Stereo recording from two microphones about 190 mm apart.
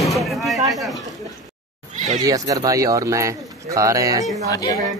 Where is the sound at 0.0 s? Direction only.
Centre (ahead or behind).